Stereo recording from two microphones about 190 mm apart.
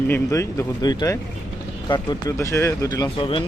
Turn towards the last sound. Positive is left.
turn(degrees=25)  # may be behind; listen again after turning